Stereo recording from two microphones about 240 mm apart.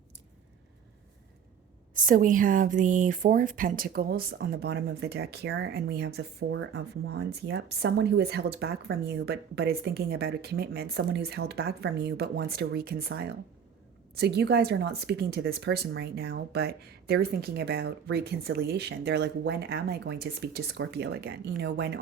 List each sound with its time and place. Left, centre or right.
2.0 s speech: right